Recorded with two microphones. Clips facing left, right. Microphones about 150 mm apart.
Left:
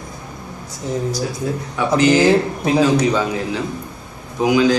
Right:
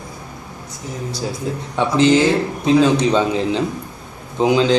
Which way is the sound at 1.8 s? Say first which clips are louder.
Even; 25° right (ahead or behind).